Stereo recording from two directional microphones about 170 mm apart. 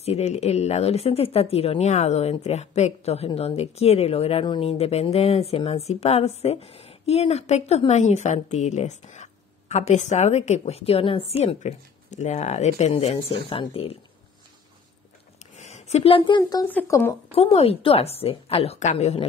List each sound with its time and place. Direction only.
0.0 s speech: 40° left (ahead or behind)
15.5 s speech: 40° left (ahead or behind); by 16.6 s 25° left (ahead or behind)
16.6 s speech: 15° left (ahead or behind)
17.3 s speech: 35° left (ahead or behind)